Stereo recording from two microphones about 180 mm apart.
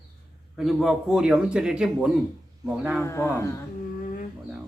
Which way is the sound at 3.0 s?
15° left (ahead or behind).